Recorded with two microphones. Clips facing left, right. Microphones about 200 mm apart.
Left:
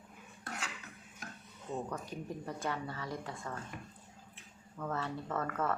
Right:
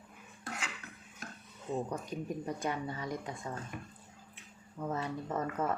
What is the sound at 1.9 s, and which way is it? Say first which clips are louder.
Speech: right 3 dB; 15° right (ahead or behind).